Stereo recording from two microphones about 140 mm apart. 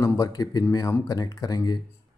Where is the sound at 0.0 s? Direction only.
20° left (ahead or behind).